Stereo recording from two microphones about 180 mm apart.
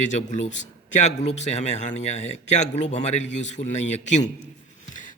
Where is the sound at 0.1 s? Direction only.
40° left (ahead or behind).